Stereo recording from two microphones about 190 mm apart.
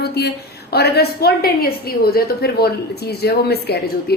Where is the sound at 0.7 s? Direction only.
55° left (ahead or behind).